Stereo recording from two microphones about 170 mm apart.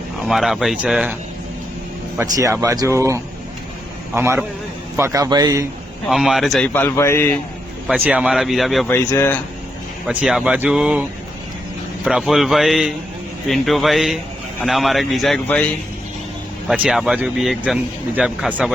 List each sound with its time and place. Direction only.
0.3 s speech: centre (ahead or behind)
2.2 s a man's voice: 20° right (ahead or behind)
6.1 s speech: centre (ahead or behind)
6.7 s a man's voice: 15° left (ahead or behind)
7.9 s speech: 5° right (ahead or behind)
8.9 s a man's voice: 15° left (ahead or behind)
10.1 s speech: 5° right (ahead or behind)
12.0 s speech: centre (ahead or behind)
16.6 s speech: 5° right (ahead or behind)